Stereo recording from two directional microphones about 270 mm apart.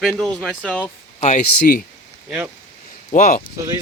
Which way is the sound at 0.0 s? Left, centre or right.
Centre.